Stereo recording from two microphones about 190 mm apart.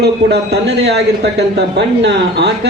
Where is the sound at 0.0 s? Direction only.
60° right (ahead or behind).